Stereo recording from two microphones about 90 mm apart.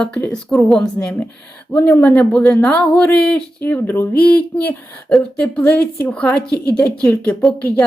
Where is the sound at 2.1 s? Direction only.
10° left (ahead or behind).